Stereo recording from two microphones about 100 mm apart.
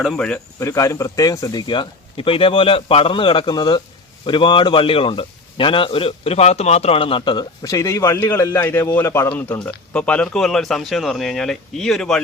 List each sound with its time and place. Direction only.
0.0 s speech: 10° left (ahead or behind)
0.6 s a man's voice: 30° left (ahead or behind); by 7.4 s 50° left (ahead or behind)
7.6 s a man's voice: 30° left (ahead or behind)
9.3 s speech: 15° left (ahead or behind)